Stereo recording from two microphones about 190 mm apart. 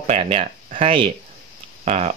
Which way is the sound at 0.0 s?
35° right (ahead or behind).